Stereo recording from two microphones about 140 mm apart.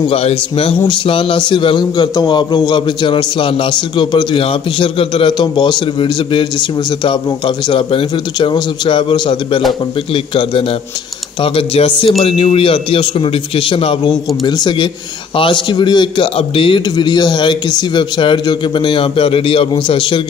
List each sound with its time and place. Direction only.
0.1 s speech: 45° left (ahead or behind)